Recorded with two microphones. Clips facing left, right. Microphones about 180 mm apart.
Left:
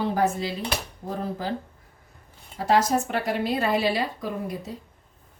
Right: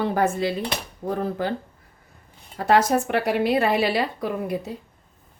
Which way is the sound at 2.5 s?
60° right (ahead or behind).